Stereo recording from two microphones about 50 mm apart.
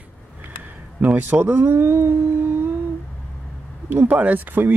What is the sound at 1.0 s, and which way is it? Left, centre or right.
Speech, right.